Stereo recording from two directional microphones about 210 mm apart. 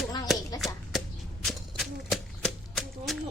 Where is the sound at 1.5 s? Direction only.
Centre (ahead or behind).